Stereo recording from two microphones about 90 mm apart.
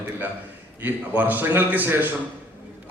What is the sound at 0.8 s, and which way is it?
A man's voice, 20° right (ahead or behind).